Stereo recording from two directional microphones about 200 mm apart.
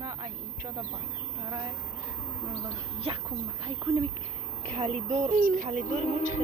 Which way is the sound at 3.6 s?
25° right (ahead or behind).